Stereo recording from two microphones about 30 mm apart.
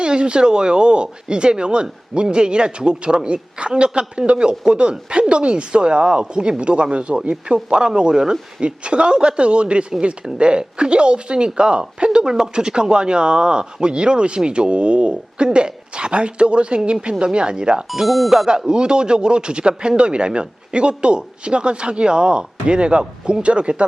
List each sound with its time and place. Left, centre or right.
0.0 s speech: right
8.2 s speech: centre
8.6 s speech: right
17.9 s speech: centre
18.7 s speech: right